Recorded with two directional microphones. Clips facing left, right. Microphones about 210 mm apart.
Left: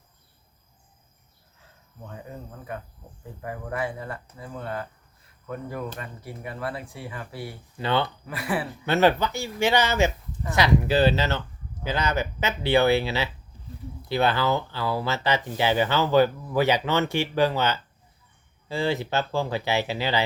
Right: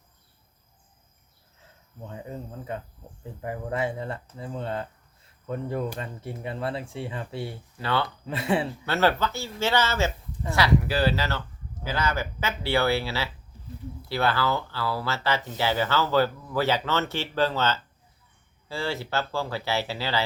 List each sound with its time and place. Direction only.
2.0 s speech: 20° right (ahead or behind)
7.8 s speech: 20° left (ahead or behind)
8.3 s speech: 25° right (ahead or behind)
8.8 s speech: 20° left (ahead or behind)